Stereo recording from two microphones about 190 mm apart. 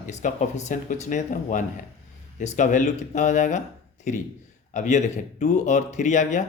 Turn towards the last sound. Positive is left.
turn(degrees=40)  # may be behind; listen again after turning